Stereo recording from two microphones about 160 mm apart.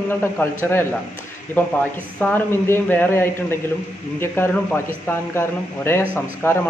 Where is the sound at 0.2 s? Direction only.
15° left (ahead or behind).